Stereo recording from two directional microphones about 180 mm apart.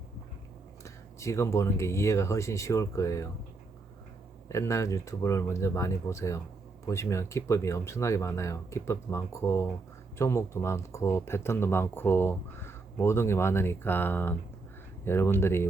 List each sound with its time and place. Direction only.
1.2 s speech: 15° left (ahead or behind)
4.4 s speech: 15° left (ahead or behind)